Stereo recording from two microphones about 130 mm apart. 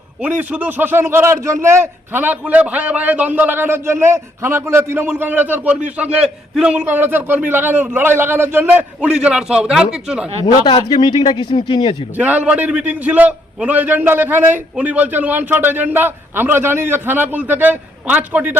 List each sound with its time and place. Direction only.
0.2 s a man's voice: 10° right (ahead or behind)
10.7 s speech: 35° left (ahead or behind)
12.1 s a man's voice: 10° right (ahead or behind)